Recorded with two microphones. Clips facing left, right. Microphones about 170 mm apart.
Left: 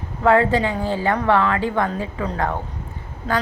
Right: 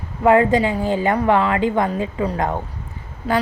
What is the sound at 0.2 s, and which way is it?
A woman's voice, 15° right (ahead or behind).